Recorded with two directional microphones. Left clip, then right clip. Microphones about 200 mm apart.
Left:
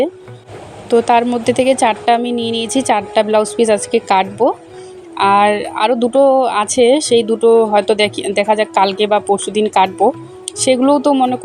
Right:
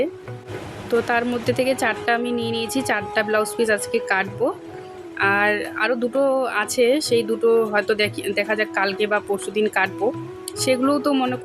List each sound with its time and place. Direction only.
0.9 s a woman's voice: 25° left (ahead or behind)